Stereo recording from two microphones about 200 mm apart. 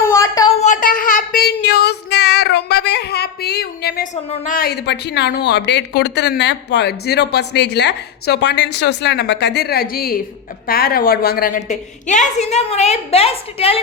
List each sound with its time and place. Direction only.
0.1 s a sound: 15° left (ahead or behind)
0.6 s child singing: 40° left (ahead or behind)
10.7 s a woman's voice: 50° left (ahead or behind); by 13.8 s 30° left (ahead or behind)